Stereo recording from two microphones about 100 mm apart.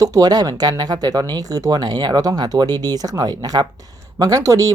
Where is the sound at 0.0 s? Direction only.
40° right (ahead or behind).